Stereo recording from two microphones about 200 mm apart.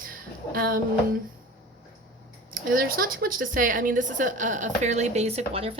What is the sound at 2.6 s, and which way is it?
Speech, 45° right (ahead or behind).